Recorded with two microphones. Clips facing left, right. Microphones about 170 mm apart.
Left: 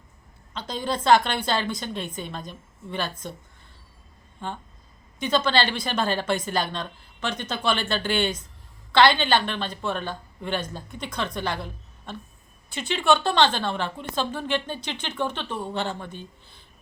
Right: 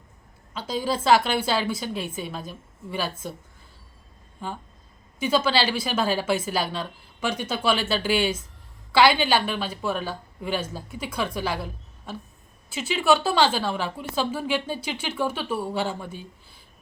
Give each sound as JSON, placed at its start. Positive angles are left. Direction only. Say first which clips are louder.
{"t": 0.5, "sound": "a woman's voice", "louder": "right 2 dB", "side_deg": -5}
{"t": 4.4, "sound": "a woman's voice", "louder": "even", "side_deg": -5}